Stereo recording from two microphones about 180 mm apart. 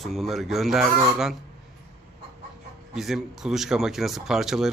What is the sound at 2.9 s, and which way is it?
Speech, centre (ahead or behind).